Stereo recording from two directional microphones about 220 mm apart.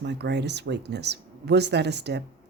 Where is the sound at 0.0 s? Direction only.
50° right (ahead or behind).